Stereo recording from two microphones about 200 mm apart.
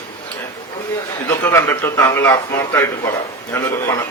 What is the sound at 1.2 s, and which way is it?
A man's voice, 10° left (ahead or behind).